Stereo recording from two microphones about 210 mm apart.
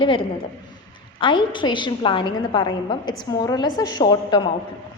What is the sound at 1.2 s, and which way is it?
A woman's voice, 20° left (ahead or behind).